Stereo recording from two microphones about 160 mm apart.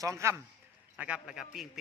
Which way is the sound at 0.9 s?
5° right (ahead or behind).